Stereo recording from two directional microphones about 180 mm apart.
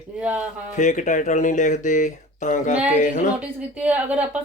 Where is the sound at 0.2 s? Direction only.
10° right (ahead or behind).